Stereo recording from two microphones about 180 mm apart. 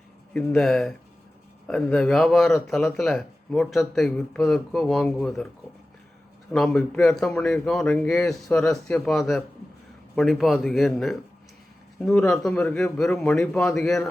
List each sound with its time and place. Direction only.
0.3 s speech: 5° left (ahead or behind)
6.5 s speech: 5° left (ahead or behind)